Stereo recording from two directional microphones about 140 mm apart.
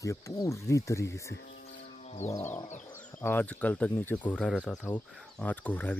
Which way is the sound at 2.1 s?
50° left (ahead or behind).